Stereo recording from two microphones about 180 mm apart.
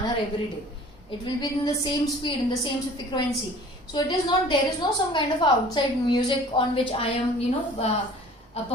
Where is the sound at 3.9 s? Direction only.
25° left (ahead or behind).